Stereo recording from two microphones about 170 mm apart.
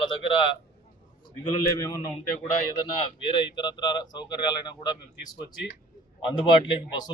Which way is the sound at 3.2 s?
25° left (ahead or behind).